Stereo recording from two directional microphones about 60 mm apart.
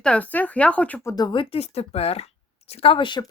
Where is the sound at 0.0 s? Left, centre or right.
Centre.